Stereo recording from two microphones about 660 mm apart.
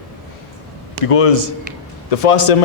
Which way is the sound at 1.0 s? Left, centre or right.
Left.